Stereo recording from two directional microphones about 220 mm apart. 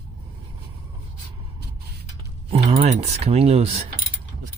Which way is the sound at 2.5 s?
25° right (ahead or behind).